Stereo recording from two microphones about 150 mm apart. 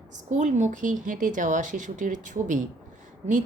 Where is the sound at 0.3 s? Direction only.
55° right (ahead or behind).